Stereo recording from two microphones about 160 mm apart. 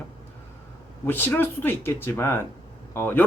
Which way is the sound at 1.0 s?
15° left (ahead or behind).